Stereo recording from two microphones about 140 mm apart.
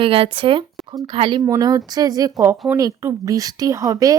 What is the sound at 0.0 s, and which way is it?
Speech, 40° right (ahead or behind).